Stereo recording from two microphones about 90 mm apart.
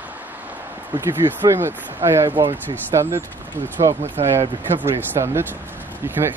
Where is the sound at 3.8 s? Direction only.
90° right.